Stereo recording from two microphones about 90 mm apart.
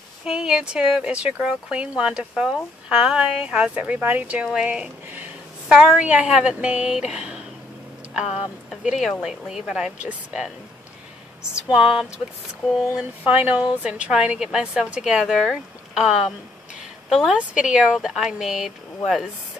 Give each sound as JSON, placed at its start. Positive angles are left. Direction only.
{"t": 0.2, "sound": "speech", "side_deg": -10}
{"t": 5.1, "sound": "a sound", "side_deg": -15}
{"t": 5.9, "sound": "speech", "side_deg": -15}
{"t": 8.6, "sound": "speech", "side_deg": 0}
{"t": 11.5, "sound": "speech", "side_deg": -10}
{"t": 13.2, "sound": "speech", "side_deg": -20}